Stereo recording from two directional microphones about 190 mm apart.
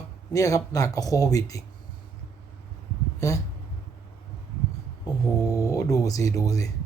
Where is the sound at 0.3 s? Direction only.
20° left (ahead or behind).